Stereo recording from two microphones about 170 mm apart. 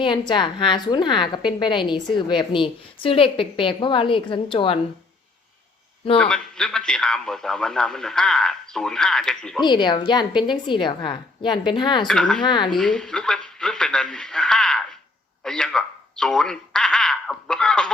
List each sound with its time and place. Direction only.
0.0 s a woman's voice: 25° left (ahead or behind)
6.1 s a man's voice: 5° left (ahead or behind)
9.6 s a woman's voice: 25° left (ahead or behind)
12.0 s a man's voice: 5° left (ahead or behind)
12.4 s a woman's voice: 25° left (ahead or behind)
12.7 s a man's voice: 5° left (ahead or behind)